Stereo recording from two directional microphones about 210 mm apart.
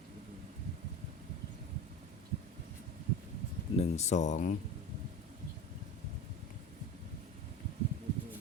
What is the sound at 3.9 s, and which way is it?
Speech, 35° left (ahead or behind).